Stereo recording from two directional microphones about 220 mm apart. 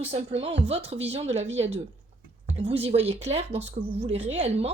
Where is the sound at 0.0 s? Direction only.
25° right (ahead or behind).